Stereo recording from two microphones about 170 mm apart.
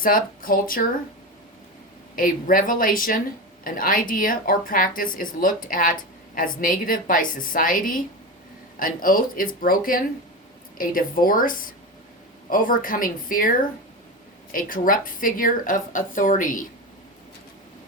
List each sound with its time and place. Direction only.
0.0 s speech: 55° left (ahead or behind)
2.1 s a woman's voice: 55° left (ahead or behind)